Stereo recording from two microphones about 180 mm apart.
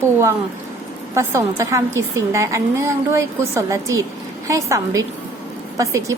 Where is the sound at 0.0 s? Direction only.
15° right (ahead or behind).